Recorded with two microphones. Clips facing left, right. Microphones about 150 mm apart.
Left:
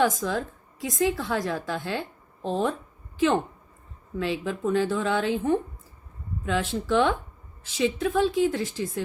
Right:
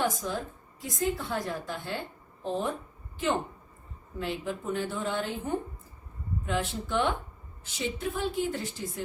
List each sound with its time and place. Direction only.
0.0 s a woman's voice: 90° left
4.2 s a woman's voice: 90° left